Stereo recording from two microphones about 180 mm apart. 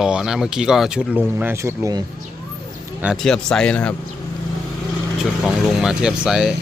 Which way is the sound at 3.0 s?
Centre (ahead or behind).